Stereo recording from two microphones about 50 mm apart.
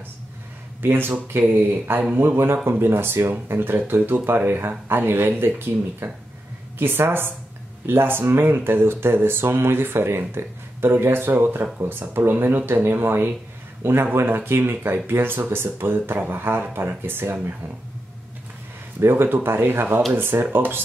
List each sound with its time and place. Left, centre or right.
0.8 s speech: right
18.9 s speech: right